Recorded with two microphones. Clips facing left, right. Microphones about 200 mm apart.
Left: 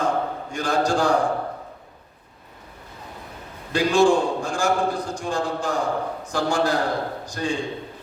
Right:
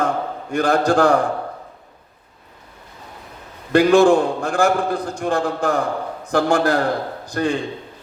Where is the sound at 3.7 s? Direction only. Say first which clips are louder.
Right 5 dB; 60° right (ahead or behind).